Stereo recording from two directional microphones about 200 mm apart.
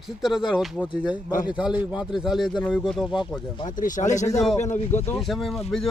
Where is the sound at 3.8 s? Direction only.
35° left (ahead or behind).